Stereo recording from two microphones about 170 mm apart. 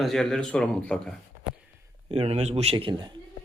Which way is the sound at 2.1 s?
40° right (ahead or behind).